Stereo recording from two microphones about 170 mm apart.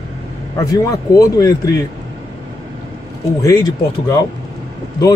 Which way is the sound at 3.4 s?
20° left (ahead or behind).